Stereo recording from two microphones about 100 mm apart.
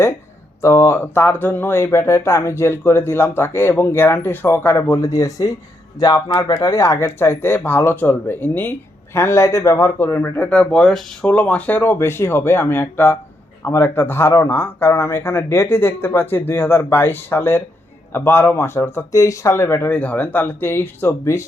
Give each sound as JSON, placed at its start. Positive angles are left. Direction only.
{"t": 0.6, "sound": "speech", "side_deg": 30}